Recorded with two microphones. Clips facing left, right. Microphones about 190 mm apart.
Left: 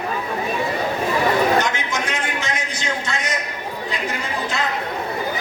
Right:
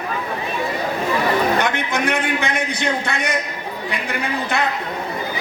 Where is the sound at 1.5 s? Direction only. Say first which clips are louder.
Right 1 dB; 60° right (ahead or behind).